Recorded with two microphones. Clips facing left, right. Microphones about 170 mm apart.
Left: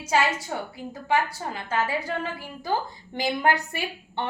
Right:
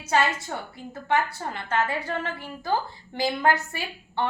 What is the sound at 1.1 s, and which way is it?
Speech, 10° left (ahead or behind).